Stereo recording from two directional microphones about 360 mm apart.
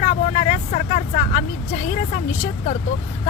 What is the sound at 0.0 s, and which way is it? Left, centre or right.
Vehicle, left.